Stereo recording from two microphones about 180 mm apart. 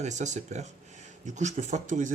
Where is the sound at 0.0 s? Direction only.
40° right (ahead or behind).